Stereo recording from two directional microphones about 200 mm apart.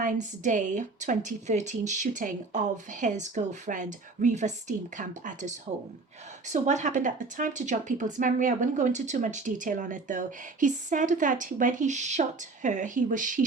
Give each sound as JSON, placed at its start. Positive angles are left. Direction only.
{"t": 0.0, "sound": "a woman's voice", "side_deg": -40}